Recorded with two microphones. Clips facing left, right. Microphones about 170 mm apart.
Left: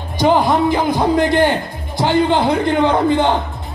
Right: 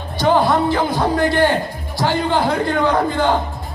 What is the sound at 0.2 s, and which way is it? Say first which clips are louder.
A man's voice: left 2 dB; 15° left (ahead or behind).